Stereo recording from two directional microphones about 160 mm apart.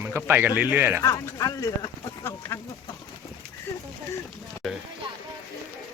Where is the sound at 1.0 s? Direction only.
20° left (ahead or behind).